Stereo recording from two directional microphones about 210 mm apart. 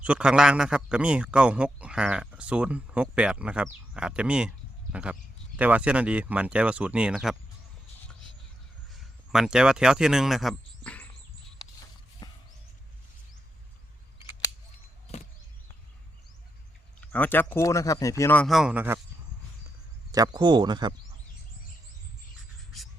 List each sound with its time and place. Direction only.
0.0 s a man's voice: 5° right (ahead or behind)
8.9 s speech: centre (ahead or behind)
12.2 s a sound: 20° left (ahead or behind)
17.0 s speech: 10° left (ahead or behind)
20.1 s speech: 20° right (ahead or behind)